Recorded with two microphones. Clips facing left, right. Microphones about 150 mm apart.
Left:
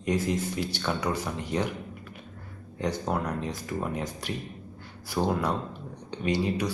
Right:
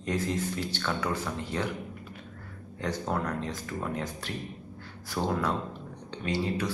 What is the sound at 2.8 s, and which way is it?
Speech, 10° left (ahead or behind).